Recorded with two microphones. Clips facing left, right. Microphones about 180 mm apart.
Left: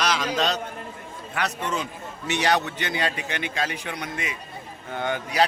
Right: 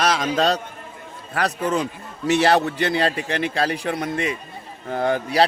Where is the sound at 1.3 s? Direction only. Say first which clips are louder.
Right 6 dB; 35° right (ahead or behind).